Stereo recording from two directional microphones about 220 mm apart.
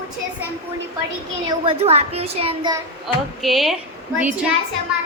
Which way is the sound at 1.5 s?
25° right (ahead or behind).